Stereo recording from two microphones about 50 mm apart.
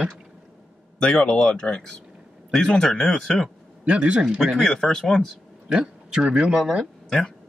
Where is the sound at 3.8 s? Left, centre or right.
Right.